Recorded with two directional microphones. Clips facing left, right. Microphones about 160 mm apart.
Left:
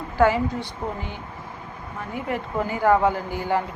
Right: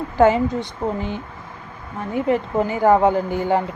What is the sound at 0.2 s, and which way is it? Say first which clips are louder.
Speech: right 4 dB; 20° right (ahead or behind).